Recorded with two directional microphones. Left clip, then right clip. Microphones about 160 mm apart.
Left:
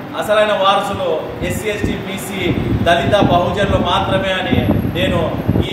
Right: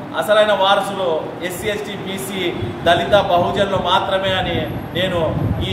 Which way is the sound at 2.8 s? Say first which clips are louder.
Even; 5° right (ahead or behind).